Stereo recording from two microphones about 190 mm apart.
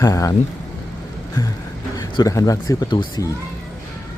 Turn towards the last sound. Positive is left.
turn(degrees=20)  # may be behind; listen again after turning